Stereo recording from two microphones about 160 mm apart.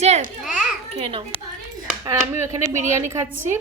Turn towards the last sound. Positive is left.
turn(degrees=-15)  # may be behind; listen again after turning